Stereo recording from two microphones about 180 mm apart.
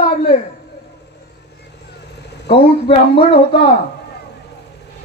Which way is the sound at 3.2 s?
30° left (ahead or behind).